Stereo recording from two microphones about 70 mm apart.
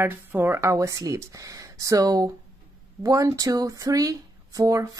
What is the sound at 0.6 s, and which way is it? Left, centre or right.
Speech, right.